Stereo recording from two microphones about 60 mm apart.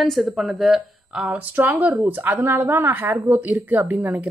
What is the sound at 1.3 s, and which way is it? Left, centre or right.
Speech, right.